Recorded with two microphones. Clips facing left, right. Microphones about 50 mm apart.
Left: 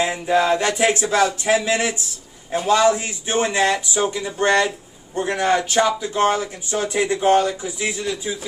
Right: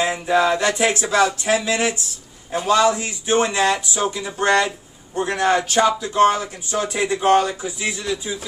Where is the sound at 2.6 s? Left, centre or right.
Centre.